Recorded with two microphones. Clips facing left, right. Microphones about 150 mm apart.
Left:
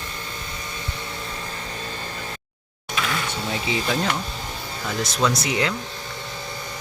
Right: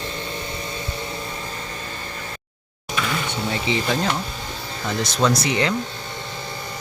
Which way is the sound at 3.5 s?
Centre (ahead or behind).